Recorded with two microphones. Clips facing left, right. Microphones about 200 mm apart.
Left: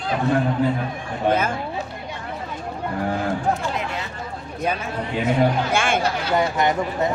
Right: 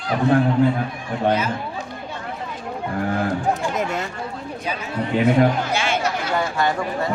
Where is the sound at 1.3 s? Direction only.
50° left (ahead or behind).